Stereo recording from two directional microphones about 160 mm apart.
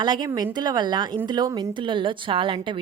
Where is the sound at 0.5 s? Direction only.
25° right (ahead or behind).